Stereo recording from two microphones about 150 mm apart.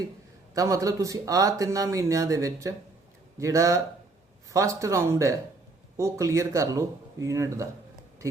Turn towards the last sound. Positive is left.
turn(degrees=-20)  # may be behind; listen again after turning